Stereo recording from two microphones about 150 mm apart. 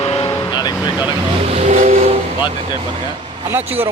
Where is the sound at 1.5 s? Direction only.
45° right (ahead or behind).